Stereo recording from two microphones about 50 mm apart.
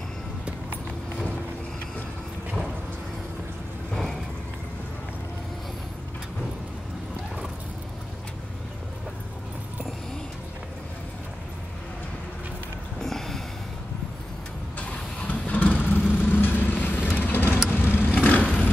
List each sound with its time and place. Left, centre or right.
3.9 s vehicle: centre
13.0 s a sound: centre
14.8 s vehicle: left
18.1 s vehicle: left